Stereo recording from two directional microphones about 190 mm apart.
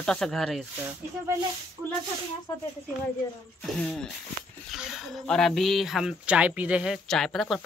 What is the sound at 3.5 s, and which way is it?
Speech, 5° left (ahead or behind).